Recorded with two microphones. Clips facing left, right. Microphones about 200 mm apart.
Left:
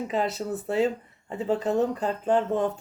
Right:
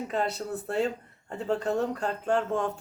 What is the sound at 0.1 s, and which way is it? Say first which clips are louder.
Speech: left 2 dB; centre (ahead or behind).